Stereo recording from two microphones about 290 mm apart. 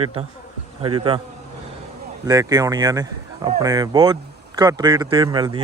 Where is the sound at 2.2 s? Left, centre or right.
Centre.